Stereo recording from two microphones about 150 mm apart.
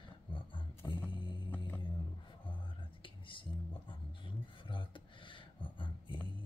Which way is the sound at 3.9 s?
35° left (ahead or behind).